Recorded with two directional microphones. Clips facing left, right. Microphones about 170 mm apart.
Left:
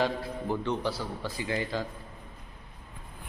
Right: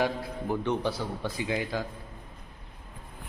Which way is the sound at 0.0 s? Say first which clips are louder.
Even; 15° right (ahead or behind).